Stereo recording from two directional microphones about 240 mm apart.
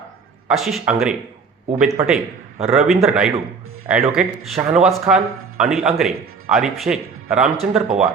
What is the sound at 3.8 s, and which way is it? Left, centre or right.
Speech, centre.